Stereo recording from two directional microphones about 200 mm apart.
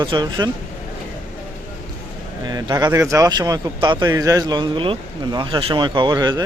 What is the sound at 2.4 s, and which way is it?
Speech, 20° right (ahead or behind).